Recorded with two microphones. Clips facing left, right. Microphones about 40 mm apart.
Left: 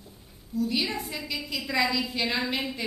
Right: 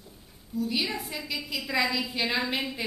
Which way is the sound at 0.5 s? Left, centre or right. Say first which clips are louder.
Left 1 dB; centre.